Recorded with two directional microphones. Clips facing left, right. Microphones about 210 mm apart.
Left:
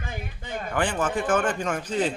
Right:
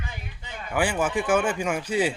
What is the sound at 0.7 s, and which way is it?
A man's voice, 10° right (ahead or behind).